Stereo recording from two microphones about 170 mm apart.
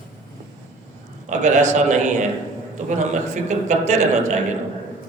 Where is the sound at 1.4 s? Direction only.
45° right (ahead or behind).